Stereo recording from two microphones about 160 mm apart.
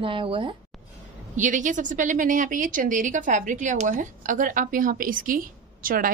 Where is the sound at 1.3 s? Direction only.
50° right (ahead or behind).